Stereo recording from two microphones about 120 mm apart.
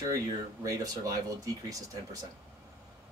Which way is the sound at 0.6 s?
30° right (ahead or behind).